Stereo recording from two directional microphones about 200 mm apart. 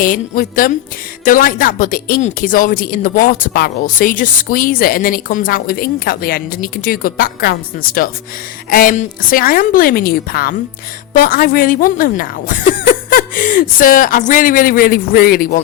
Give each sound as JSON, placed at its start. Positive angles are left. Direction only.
{"t": 0.0, "sound": "speech", "side_deg": 45}